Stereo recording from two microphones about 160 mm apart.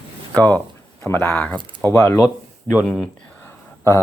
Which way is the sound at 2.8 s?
5° left (ahead or behind).